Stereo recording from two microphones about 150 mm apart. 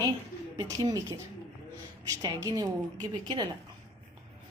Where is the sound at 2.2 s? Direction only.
25° right (ahead or behind).